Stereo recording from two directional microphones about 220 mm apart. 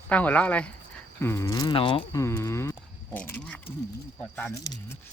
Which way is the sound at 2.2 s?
10° left (ahead or behind).